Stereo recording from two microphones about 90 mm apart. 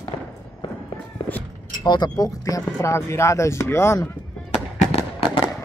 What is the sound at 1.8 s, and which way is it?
Speech, 50° left (ahead or behind).